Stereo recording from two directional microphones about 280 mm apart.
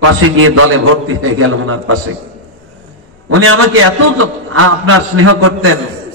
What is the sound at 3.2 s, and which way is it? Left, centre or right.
A man's voice, right.